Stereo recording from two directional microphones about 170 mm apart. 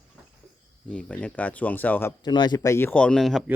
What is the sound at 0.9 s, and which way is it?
Speech, 5° left (ahead or behind).